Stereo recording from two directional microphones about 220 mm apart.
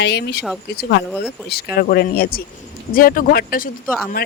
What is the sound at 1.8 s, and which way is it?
Speech, 45° left (ahead or behind).